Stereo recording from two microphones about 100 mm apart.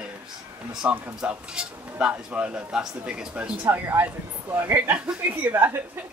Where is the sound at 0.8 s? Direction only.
10° right (ahead or behind).